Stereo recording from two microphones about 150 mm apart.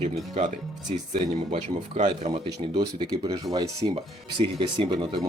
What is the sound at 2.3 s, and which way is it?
Speech, 35° right (ahead or behind).